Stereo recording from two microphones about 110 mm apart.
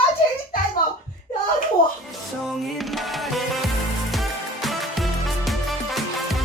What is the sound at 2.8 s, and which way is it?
Music, centre (ahead or behind).